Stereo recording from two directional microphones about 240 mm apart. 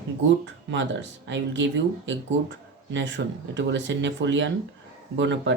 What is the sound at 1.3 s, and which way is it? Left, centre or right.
Speech, right.